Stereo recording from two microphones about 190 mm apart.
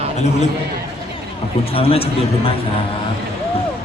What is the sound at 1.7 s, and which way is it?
Speech, 30° left (ahead or behind).